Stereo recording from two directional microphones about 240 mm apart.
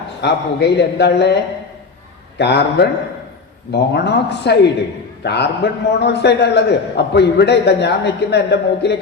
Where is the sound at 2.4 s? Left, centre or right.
Left.